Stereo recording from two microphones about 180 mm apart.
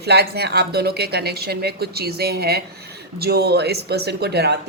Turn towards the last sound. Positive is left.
turn(degrees=-65)  # may be behind; listen again after turning